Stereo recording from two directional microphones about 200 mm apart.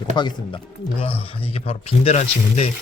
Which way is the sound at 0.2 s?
20° left (ahead or behind).